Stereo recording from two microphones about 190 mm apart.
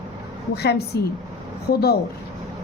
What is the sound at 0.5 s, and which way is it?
Speech, 60° left (ahead or behind).